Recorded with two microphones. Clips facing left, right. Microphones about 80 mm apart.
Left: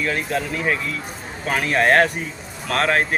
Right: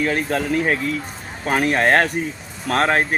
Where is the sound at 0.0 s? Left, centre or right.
Right.